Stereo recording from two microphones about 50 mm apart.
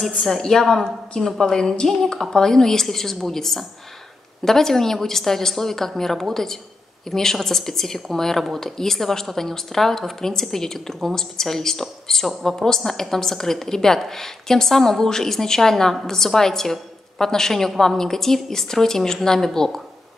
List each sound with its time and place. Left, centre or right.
0.4 s a woman's voice: centre